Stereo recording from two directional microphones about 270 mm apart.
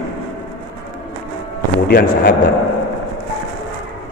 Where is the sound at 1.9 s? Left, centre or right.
Left.